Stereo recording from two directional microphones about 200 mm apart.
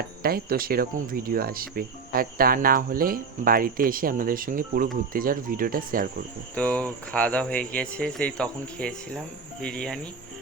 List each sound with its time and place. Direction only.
0.2 s speech: 50° right (ahead or behind)
6.6 s speech: 5° left (ahead or behind)